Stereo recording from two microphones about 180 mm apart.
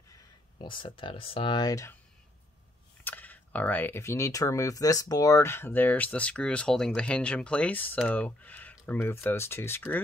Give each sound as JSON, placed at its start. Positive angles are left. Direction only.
{"t": 0.1, "sound": "speech", "side_deg": 25}
{"t": 3.0, "sound": "speech", "side_deg": 10}